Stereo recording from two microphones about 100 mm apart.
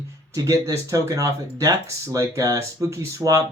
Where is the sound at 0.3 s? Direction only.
35° right (ahead or behind).